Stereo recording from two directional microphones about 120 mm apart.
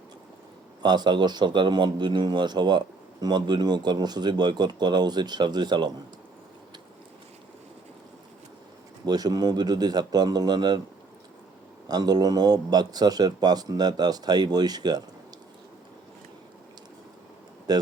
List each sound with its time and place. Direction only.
0.8 s a man's voice: 35° right (ahead or behind)
9.0 s a man's voice: 35° right (ahead or behind)
11.9 s a man's voice: 35° right (ahead or behind)
17.7 s a man's voice: 35° right (ahead or behind)